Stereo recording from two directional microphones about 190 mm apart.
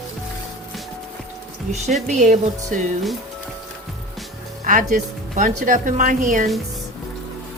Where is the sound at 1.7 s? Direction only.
40° right (ahead or behind).